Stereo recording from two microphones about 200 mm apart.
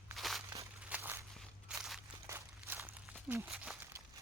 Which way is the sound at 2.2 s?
10° right (ahead or behind).